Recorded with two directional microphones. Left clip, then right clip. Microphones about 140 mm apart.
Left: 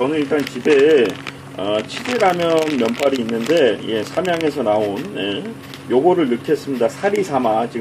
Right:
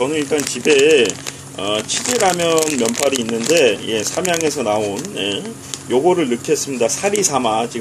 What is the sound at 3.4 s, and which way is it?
Speech, 20° right (ahead or behind).